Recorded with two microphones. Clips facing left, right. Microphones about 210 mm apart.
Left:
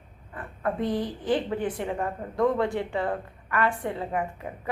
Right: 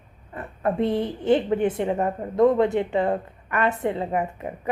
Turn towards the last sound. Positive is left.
turn(degrees=-20)  # may be behind; listen again after turning